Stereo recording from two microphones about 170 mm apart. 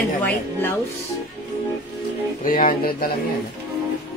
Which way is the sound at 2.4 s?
55° left (ahead or behind).